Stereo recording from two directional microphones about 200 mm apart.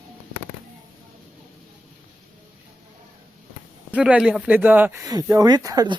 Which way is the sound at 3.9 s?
5° right (ahead or behind).